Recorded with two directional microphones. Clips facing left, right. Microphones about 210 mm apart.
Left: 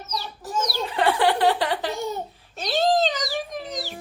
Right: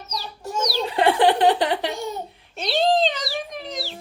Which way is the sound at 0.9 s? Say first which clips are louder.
Right 3 dB; 20° right (ahead or behind).